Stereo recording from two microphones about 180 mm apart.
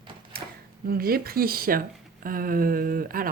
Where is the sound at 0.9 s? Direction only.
55° right (ahead or behind).